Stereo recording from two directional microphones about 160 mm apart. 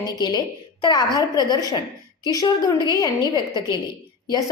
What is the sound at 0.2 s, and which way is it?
A woman's voice, 25° left (ahead or behind).